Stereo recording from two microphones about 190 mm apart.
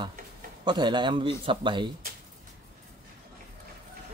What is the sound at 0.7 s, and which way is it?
Speech, 25° right (ahead or behind).